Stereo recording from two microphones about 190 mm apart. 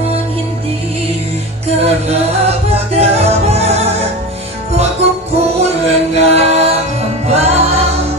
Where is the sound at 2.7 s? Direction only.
35° right (ahead or behind).